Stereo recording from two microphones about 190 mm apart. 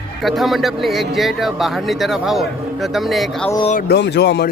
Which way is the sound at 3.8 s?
60° left (ahead or behind).